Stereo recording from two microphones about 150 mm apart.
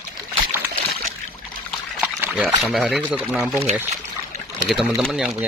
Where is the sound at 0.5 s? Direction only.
15° right (ahead or behind).